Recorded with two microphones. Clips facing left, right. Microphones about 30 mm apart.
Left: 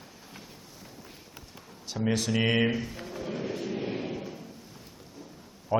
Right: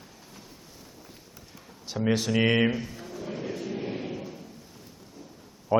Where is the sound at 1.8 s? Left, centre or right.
Centre.